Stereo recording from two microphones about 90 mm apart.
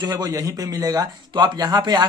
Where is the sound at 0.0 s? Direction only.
45° right (ahead or behind).